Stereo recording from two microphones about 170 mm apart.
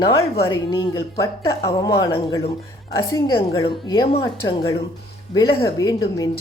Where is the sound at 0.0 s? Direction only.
25° left (ahead or behind).